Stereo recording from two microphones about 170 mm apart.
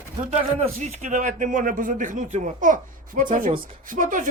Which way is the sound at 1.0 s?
50° right (ahead or behind).